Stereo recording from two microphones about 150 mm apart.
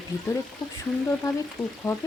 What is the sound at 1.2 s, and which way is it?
Speech, 25° left (ahead or behind).